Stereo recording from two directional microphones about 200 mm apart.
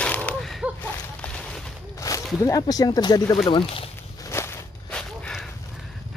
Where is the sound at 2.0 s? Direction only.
15° left (ahead or behind).